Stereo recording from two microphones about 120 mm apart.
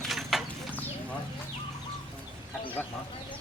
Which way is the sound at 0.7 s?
15° left (ahead or behind).